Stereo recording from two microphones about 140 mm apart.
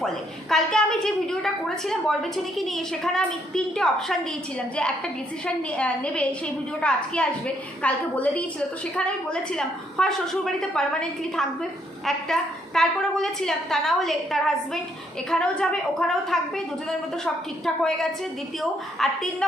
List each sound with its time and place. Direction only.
0.5 s a woman's voice: 5° left (ahead or behind)
5.7 s a woman's voice: 10° left (ahead or behind)
12.0 s a woman's voice: 5° left (ahead or behind)
18.6 s a woman's voice: 5° left (ahead or behind)